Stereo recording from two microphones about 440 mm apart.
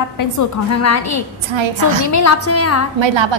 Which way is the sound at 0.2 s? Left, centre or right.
Left.